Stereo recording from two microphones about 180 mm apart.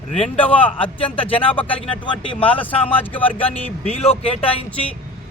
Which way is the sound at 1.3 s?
30° left (ahead or behind).